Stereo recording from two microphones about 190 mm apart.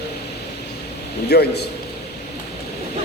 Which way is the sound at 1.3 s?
60° left (ahead or behind).